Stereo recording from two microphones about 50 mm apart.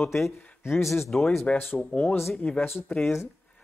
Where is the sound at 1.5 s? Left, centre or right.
Left.